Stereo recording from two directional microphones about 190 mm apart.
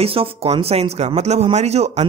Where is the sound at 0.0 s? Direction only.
30° right (ahead or behind).